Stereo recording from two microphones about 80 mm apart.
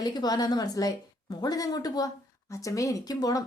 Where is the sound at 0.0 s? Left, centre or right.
Left.